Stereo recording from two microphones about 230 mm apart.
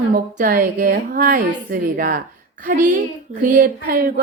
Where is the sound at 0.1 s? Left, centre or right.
Right.